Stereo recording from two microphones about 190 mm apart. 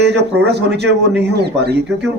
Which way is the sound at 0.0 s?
60° right (ahead or behind).